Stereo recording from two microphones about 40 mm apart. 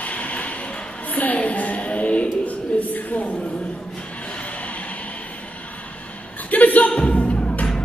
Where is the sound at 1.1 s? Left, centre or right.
Left.